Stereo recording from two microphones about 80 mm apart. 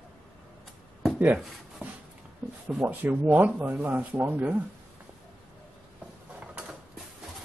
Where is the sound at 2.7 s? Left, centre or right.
Right.